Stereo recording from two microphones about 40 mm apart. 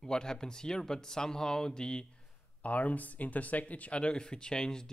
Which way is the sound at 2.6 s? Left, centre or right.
Left.